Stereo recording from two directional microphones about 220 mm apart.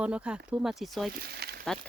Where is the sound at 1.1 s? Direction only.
45° right (ahead or behind).